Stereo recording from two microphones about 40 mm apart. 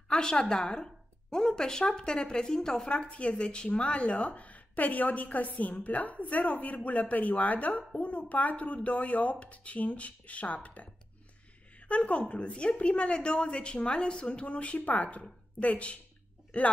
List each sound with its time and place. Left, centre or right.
0.1 s speech: centre
2.9 s a woman's voice: left